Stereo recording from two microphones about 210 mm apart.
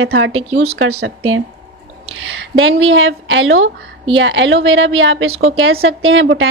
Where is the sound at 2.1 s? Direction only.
65° right (ahead or behind).